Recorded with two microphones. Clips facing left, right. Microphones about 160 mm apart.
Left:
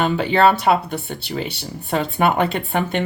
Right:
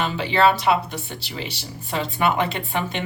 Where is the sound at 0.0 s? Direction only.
50° left (ahead or behind).